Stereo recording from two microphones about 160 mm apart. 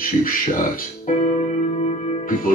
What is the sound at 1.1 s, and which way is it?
Music, 55° left (ahead or behind).